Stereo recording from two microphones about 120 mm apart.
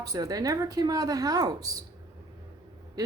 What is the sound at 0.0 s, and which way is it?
Speech, 30° right (ahead or behind).